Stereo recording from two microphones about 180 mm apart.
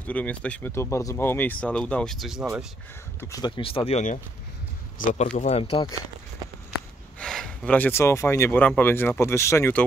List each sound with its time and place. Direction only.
0.0 s speech: 10° left (ahead or behind)
3.2 s speech: 20° left (ahead or behind)
7.2 s speech: 5° left (ahead or behind)